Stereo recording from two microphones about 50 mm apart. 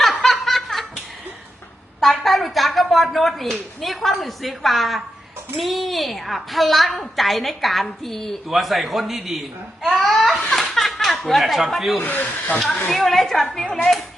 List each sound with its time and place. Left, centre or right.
0.0 s snicker: centre
2.0 s a sound: centre
3.8 s a woman's voice: centre
10.8 s a sound: centre
11.9 s speech: left
12.9 s a woman's voice: centre